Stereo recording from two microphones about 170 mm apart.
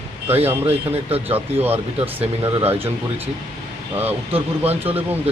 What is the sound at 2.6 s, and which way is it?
Speech, 35° right (ahead or behind).